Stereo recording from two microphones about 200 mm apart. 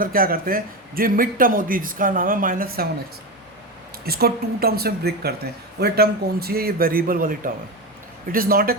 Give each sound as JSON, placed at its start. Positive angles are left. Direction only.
{"t": 0.0, "sound": "a man's voice", "side_deg": -45}
{"t": 4.0, "sound": "a man's voice", "side_deg": -50}